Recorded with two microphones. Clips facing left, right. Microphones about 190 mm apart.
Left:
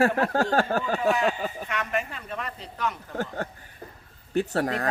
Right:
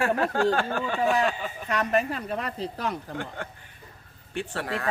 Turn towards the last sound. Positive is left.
turn(degrees=40)  # may be behind; listen again after turning